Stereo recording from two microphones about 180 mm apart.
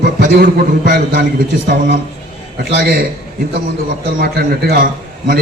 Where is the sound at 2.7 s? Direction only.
65° right (ahead or behind).